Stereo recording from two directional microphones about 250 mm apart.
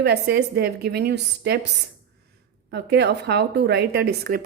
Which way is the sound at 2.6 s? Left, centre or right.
Right.